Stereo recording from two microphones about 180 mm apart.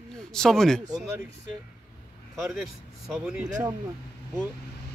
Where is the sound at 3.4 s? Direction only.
20° right (ahead or behind).